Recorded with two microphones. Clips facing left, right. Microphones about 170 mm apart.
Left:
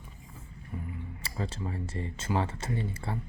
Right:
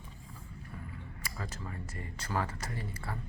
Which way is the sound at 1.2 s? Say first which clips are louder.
Left 7 dB; 30° left (ahead or behind).